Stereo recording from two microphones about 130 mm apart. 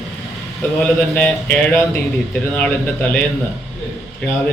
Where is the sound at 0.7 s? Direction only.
10° left (ahead or behind).